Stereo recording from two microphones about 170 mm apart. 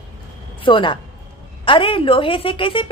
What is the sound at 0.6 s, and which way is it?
A woman's voice, 30° left (ahead or behind).